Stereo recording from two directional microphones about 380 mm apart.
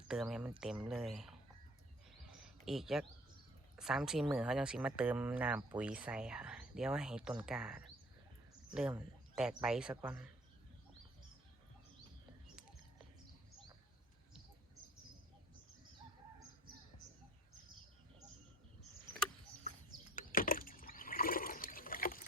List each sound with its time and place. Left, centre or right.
0.1 s speech: centre
2.4 s speech: centre
20.1 s water: left